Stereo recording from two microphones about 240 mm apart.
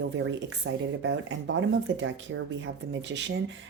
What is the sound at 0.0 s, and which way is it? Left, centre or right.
A woman's voice, right.